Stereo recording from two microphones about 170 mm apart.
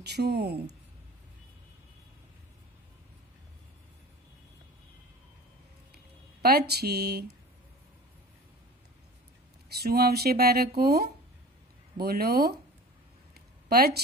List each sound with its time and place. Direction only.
0.0 s speech: 75° right (ahead or behind)
6.4 s speech: 70° right (ahead or behind)
9.8 s speech: 65° right (ahead or behind)
13.3 s a sound: 65° right (ahead or behind)